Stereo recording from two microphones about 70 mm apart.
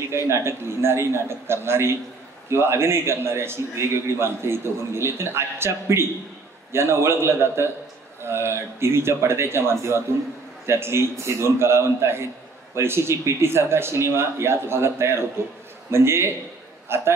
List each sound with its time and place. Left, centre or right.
0.1 s a man's voice: right